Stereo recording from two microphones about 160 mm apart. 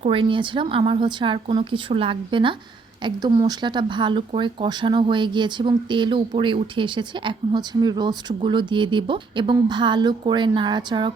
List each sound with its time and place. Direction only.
0.0 s a woman's voice: 35° right (ahead or behind)